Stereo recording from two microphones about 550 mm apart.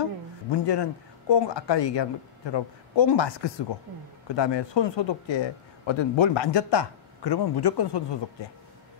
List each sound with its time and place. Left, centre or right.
0.5 s a man's voice: left